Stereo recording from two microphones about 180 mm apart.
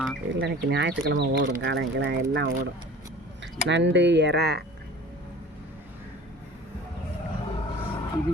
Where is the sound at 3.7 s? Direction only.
75° right (ahead or behind).